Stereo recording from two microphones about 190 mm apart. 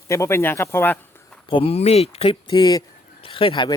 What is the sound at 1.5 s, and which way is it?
Speech, 30° left (ahead or behind).